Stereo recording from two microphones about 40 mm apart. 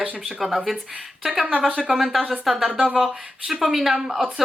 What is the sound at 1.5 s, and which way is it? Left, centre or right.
Speech, right.